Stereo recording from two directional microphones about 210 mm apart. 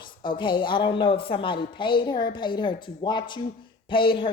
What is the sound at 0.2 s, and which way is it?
A man's voice, 20° left (ahead or behind).